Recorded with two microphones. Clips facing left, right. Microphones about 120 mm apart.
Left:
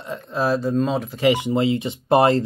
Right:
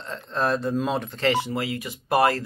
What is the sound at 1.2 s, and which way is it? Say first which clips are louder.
Speech: left 7 dB; 15° left (ahead or behind).